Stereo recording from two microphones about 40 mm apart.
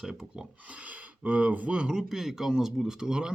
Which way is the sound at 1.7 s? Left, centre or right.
Centre.